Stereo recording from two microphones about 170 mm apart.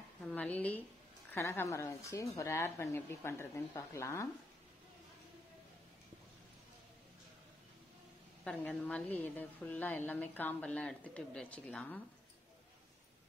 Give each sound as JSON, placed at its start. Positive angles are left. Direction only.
{"t": 0.2, "sound": "a woman's voice", "side_deg": 10}
{"t": 8.5, "sound": "a woman's voice", "side_deg": 5}